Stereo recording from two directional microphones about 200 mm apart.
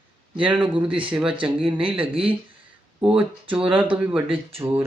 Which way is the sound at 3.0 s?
5° right (ahead or behind).